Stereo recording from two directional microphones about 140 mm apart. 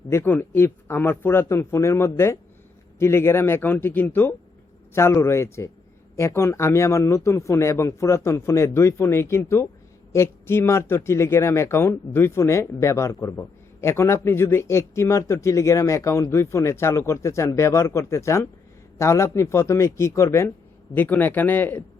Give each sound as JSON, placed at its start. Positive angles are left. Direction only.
{"t": 0.1, "sound": "speech", "side_deg": 15}